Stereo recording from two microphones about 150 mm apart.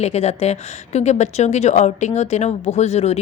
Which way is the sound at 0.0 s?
45° left (ahead or behind).